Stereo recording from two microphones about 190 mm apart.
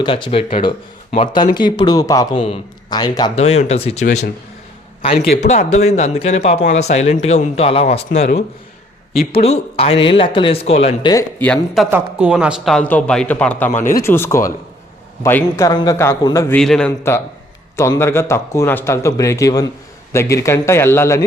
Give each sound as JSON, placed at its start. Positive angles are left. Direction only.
{"t": 0.0, "sound": "speech", "side_deg": 25}
{"t": 3.3, "sound": "speech", "side_deg": 35}
{"t": 5.1, "sound": "a man's voice", "side_deg": 60}
{"t": 5.5, "sound": "speech", "side_deg": 35}
{"t": 10.8, "sound": "a man's voice", "side_deg": 20}
{"t": 11.9, "sound": "a man's voice", "side_deg": -10}
{"t": 16.6, "sound": "a man's voice", "side_deg": 5}